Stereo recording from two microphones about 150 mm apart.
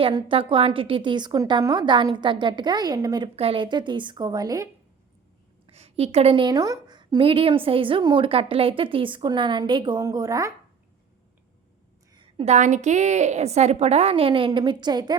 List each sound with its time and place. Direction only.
0.0 s a woman's voice: 30° right (ahead or behind)
3.3 s a woman's voice: 40° right (ahead or behind)
5.6 s a woman's voice: 45° right (ahead or behind); by 10.5 s 20° right (ahead or behind)
12.1 s a sound: 35° right (ahead or behind)
12.5 s a woman's voice: 55° right (ahead or behind); by 15.2 s 30° right (ahead or behind)